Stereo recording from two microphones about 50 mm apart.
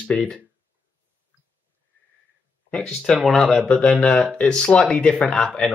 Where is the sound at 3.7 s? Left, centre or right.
Left.